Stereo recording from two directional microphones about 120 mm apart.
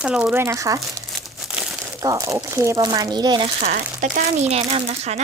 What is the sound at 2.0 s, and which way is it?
Speech, 30° right (ahead or behind).